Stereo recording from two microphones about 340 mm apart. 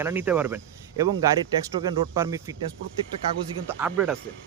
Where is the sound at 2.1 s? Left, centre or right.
Centre.